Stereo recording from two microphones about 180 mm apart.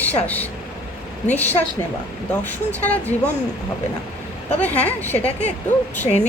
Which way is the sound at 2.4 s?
10° left (ahead or behind).